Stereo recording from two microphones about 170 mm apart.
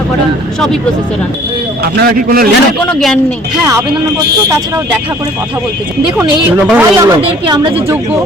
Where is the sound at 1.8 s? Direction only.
60° right (ahead or behind).